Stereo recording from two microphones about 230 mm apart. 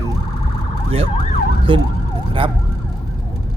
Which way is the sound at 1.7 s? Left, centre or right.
Right.